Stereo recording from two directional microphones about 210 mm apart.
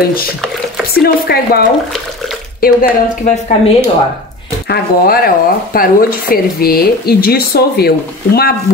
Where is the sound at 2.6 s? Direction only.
40° left (ahead or behind).